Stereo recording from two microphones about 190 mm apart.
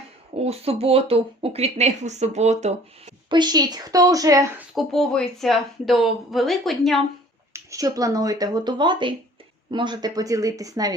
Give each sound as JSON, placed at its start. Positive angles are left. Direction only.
{"t": 0.3, "sound": "speech", "side_deg": -35}
{"t": 3.2, "sound": "speech", "side_deg": -25}
{"t": 4.7, "sound": "speech", "side_deg": 0}
{"t": 7.5, "sound": "speech", "side_deg": -15}